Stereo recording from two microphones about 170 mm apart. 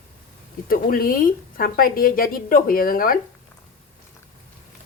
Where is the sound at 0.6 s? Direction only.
55° left (ahead or behind).